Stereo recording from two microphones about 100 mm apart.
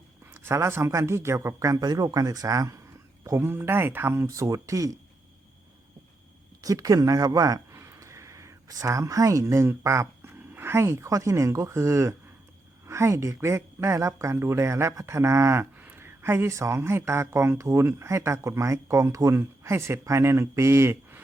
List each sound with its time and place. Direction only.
0.3 s speech: 25° right (ahead or behind)
6.6 s speech: 35° right (ahead or behind)